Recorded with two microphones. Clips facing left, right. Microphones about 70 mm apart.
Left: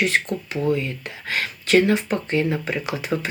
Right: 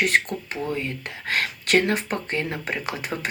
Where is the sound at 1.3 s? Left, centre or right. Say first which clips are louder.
Left 2 dB; right.